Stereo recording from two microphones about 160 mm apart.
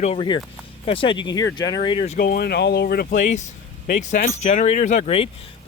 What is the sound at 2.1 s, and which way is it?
Speech, 70° left (ahead or behind).